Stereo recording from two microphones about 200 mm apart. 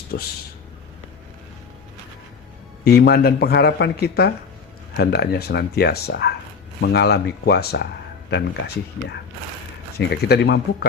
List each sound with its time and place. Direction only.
0.1 s speech: 60° left (ahead or behind)
2.8 s speech: 50° left (ahead or behind)